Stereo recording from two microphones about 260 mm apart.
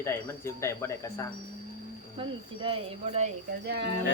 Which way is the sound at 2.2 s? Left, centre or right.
Centre.